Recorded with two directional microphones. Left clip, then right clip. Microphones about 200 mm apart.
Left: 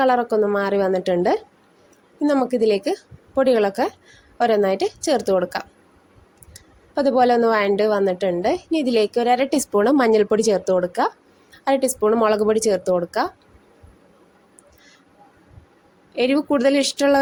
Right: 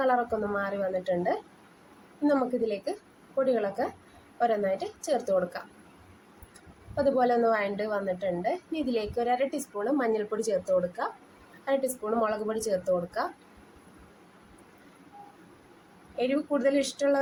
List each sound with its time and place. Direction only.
0.0 s a woman's voice: 45° left (ahead or behind)
6.9 s a woman's voice: 45° left (ahead or behind)
16.1 s a woman's voice: 45° left (ahead or behind)